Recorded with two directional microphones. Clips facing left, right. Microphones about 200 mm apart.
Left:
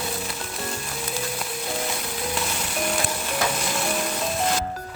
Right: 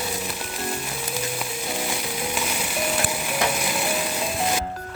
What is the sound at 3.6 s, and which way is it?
Stir, 5° right (ahead or behind).